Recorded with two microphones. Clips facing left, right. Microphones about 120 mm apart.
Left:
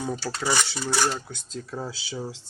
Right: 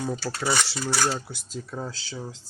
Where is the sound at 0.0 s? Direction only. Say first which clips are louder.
Even; centre (ahead or behind).